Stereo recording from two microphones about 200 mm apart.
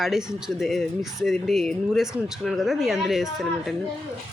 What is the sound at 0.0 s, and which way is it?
Speech, centre (ahead or behind).